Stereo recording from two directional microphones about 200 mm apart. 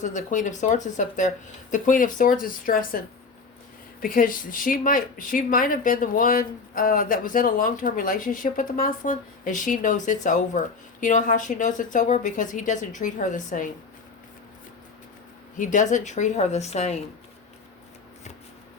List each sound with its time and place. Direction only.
0.0 s a woman's voice: 40° left (ahead or behind)
4.0 s a woman's voice: 45° left (ahead or behind)
15.5 s a woman's voice: 40° left (ahead or behind)